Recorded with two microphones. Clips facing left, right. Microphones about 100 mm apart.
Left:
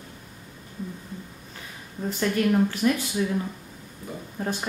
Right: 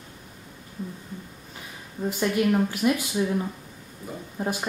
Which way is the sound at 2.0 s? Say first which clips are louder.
Even; 10° right (ahead or behind).